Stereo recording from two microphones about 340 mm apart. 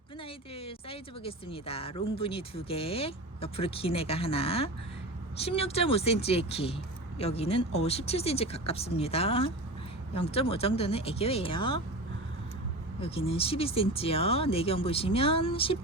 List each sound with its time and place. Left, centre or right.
0.5 s speech: centre
13.0 s speech: centre